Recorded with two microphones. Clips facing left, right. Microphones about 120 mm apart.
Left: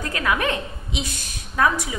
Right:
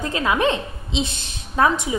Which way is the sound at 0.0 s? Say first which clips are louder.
Right 3 dB; 25° right (ahead or behind).